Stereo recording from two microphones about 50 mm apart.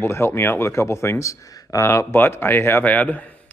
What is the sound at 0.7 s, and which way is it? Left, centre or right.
Speech, left.